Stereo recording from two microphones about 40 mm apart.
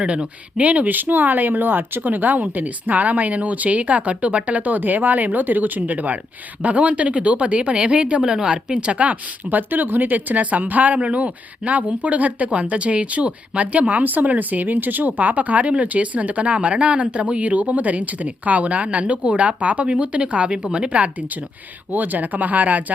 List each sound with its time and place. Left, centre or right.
0.0 s speech: right
4.6 s speech: right
8.2 s speech: centre
21.9 s speech: right